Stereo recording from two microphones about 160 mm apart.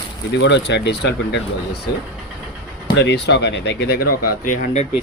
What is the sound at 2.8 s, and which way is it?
Speech, 90° left.